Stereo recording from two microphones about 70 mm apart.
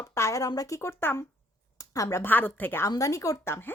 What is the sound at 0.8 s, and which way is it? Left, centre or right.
Speech, left.